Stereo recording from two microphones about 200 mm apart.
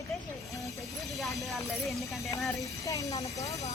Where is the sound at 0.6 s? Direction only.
Centre (ahead or behind).